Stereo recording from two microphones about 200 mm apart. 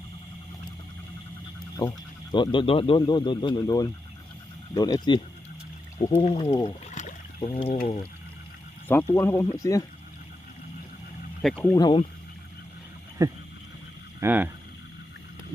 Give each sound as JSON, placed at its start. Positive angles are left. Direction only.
{"t": 2.3, "sound": "speech", "side_deg": 25}
{"t": 6.2, "sound": "speech", "side_deg": 30}
{"t": 7.0, "sound": "rowboat", "side_deg": 35}
{"t": 7.3, "sound": "speech", "side_deg": 30}
{"t": 8.9, "sound": "speech", "side_deg": 10}
{"t": 11.4, "sound": "speech", "side_deg": 10}
{"t": 13.2, "sound": "duck", "side_deg": -15}
{"t": 14.2, "sound": "speech", "side_deg": -10}